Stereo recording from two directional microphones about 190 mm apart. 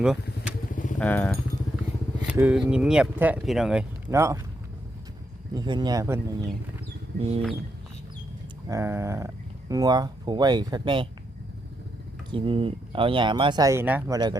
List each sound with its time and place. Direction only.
0.7 s vehicle: 45° left (ahead or behind)
0.9 s speech: 10° left (ahead or behind)
2.2 s speech: 5° right (ahead or behind)
4.1 s speech: 15° right (ahead or behind)
5.5 s speech: 25° right (ahead or behind)
7.2 s chicken: 30° right (ahead or behind)
8.7 s speech: 15° right (ahead or behind)
12.3 s speech: 30° right (ahead or behind); by 14.2 s 10° right (ahead or behind)